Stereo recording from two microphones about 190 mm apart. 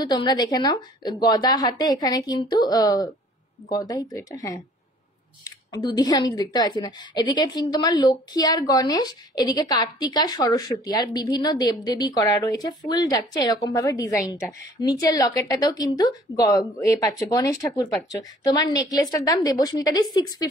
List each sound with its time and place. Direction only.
0.0 s a woman's voice: 20° left (ahead or behind)